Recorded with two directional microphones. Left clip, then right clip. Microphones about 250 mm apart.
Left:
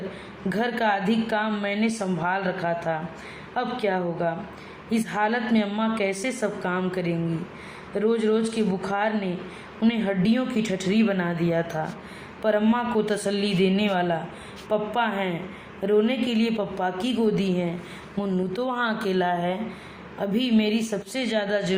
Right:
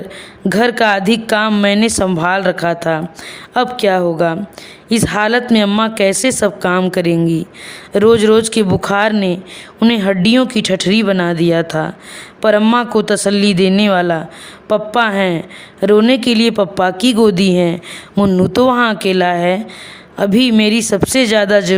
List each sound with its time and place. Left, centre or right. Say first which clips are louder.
0.4 s speech: right 12 dB; right